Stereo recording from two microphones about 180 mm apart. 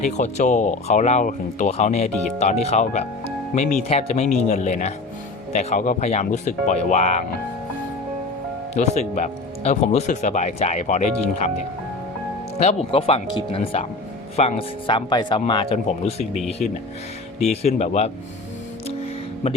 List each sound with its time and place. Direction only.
0.0 s speech: 40° left (ahead or behind)
8.7 s speech: 40° left (ahead or behind)
12.5 s speech: 35° left (ahead or behind)
17.4 s speech: 35° left (ahead or behind)